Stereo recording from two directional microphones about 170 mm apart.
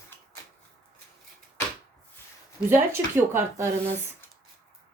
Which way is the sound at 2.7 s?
15° right (ahead or behind).